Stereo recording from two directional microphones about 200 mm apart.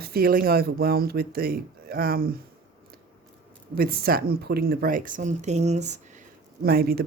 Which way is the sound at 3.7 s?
50° right (ahead or behind).